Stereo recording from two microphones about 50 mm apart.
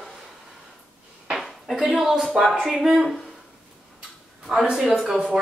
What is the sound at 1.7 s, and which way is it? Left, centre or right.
Speech, centre.